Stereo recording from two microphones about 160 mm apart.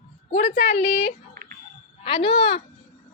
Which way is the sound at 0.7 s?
40° left (ahead or behind).